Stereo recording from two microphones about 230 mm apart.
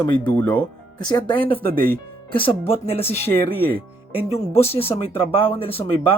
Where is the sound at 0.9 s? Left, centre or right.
Centre.